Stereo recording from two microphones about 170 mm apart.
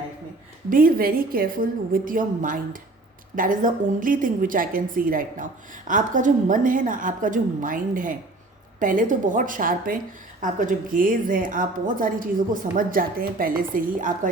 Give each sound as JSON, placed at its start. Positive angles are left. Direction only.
{"t": 0.7, "sound": "a woman's voice", "side_deg": -55}